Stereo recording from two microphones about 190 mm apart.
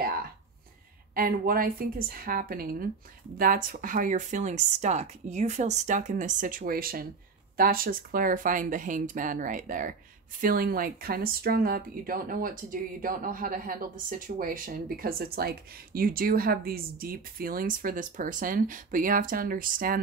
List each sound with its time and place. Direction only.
1.1 s speech: 50° right (ahead or behind)